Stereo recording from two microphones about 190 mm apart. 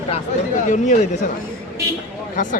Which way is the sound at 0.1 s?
40° left (ahead or behind).